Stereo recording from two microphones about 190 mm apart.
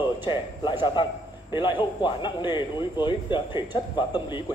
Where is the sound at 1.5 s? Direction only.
25° left (ahead or behind).